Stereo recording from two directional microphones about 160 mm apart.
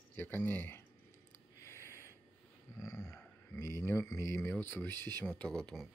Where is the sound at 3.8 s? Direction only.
15° left (ahead or behind).